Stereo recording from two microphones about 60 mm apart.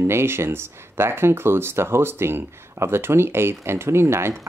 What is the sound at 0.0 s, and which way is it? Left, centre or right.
Speech, right.